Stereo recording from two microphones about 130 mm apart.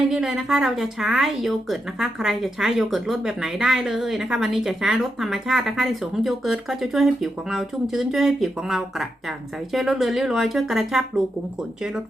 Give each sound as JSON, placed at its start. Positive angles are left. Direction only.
{"t": 0.1, "sound": "a woman's voice", "side_deg": -5}